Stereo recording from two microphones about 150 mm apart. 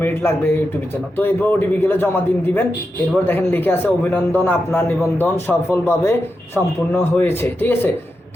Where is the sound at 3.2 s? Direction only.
15° left (ahead or behind).